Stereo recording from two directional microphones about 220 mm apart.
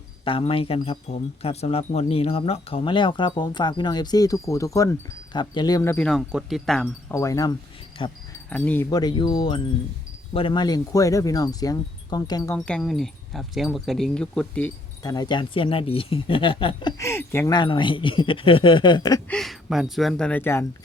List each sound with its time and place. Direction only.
0.3 s speech: 25° left (ahead or behind); by 6.8 s centre (ahead or behind)
7.1 s wind chime: 15° left (ahead or behind)
7.9 s speech: 25° left (ahead or behind)
8.4 s wind chime: 5° left (ahead or behind)
12.5 s speech: 5° left (ahead or behind)
15.0 s speech: 20° left (ahead or behind)
19.3 s speech: centre (ahead or behind)